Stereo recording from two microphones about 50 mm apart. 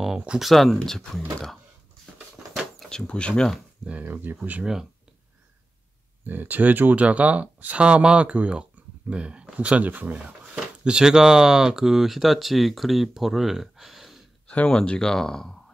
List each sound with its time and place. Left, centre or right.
0.4 s speech: centre
2.4 s a sound: right
3.1 s speech: centre
4.0 s speech: right
4.4 s speech: right
6.2 s speech: right
10.1 s speech: centre
14.7 s speech: centre